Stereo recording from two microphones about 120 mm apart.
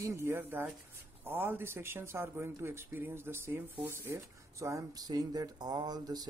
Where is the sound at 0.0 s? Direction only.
20° right (ahead or behind).